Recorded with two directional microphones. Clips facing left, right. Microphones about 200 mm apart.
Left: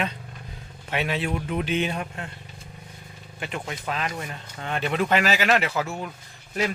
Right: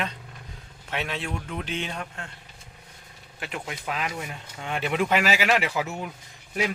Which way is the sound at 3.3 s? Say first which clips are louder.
Left 2 dB; 5° right (ahead or behind).